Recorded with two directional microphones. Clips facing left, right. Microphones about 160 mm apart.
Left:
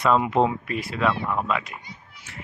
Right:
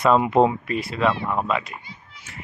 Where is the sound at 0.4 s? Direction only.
40° right (ahead or behind).